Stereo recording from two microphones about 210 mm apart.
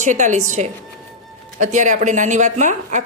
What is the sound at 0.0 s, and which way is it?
A woman's voice, 35° right (ahead or behind).